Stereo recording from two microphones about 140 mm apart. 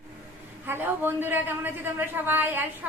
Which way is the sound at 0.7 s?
15° right (ahead or behind).